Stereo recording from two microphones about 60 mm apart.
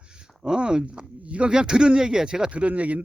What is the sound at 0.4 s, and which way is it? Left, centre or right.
Speech, centre.